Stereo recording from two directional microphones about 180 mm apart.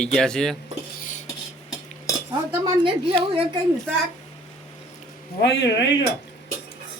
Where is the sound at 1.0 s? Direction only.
45° left (ahead or behind).